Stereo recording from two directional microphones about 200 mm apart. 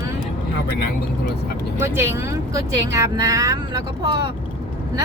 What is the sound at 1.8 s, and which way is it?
Speech, 10° right (ahead or behind).